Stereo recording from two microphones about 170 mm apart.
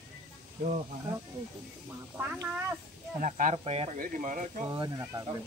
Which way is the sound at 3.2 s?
45° right (ahead or behind).